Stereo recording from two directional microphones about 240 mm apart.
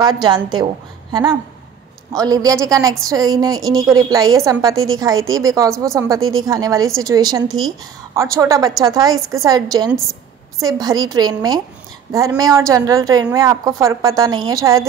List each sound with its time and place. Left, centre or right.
0.0 s a woman's voice: centre
2.1 s a woman's voice: centre
4.7 s a woman's voice: right
5.3 s a woman's voice: centre